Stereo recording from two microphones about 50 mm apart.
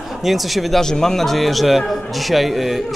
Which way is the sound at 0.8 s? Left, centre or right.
Centre.